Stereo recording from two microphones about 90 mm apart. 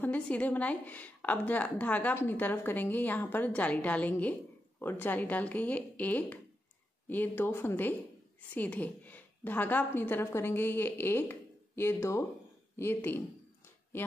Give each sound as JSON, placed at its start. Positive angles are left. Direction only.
{"t": 0.0, "sound": "a woman's voice", "side_deg": 15}